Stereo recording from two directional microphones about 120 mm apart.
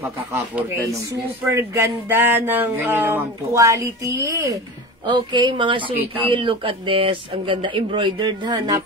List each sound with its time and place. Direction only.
1.5 s speech: 20° right (ahead or behind)
5.0 s speech: 40° right (ahead or behind)